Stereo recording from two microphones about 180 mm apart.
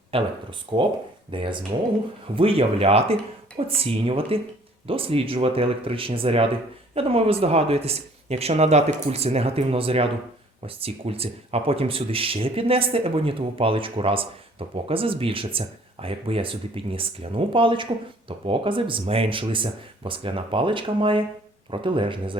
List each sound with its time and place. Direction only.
0.1 s speech: 30° right (ahead or behind)